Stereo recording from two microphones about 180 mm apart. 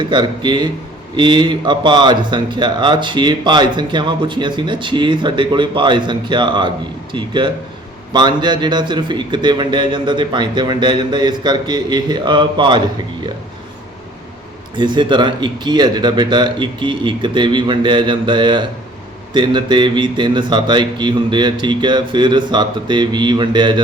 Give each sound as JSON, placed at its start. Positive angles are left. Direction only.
{"t": 0.0, "sound": "speech", "side_deg": -25}
{"t": 14.8, "sound": "speech", "side_deg": -25}